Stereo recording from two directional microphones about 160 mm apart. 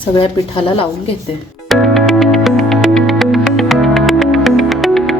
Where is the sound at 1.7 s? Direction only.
Centre (ahead or behind).